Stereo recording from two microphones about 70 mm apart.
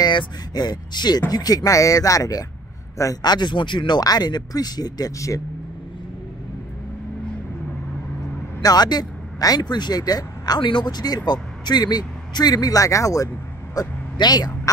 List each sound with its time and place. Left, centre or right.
0.6 s speech: left
1.3 s speech: left
3.2 s speech: left
8.6 s speech: left
13.7 s speech: left